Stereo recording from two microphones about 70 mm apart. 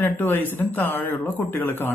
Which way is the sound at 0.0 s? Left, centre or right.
Left.